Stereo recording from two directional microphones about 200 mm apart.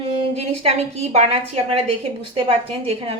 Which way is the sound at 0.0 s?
30° right (ahead or behind).